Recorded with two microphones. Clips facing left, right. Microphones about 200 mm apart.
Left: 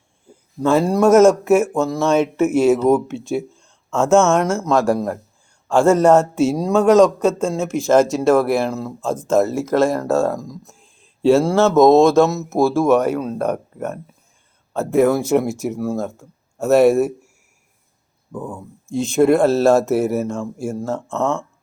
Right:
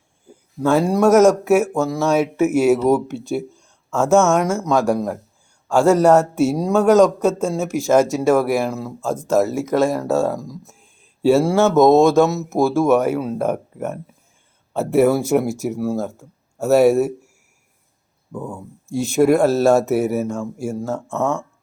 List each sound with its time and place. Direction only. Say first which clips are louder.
0.6 s speech: left 1 dB; centre (ahead or behind)
18.3 s speech: even; 5° right (ahead or behind)
18.9 s speech: left 1 dB; 20° left (ahead or behind)
19.1 s speech: left 1 dB; 5° right (ahead or behind)